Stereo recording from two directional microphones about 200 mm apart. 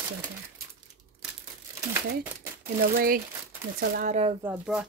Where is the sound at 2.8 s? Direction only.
45° right (ahead or behind); by 4.5 s 30° right (ahead or behind).